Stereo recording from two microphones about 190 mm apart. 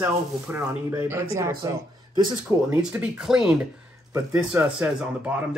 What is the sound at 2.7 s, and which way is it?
Speech, 10° right (ahead or behind).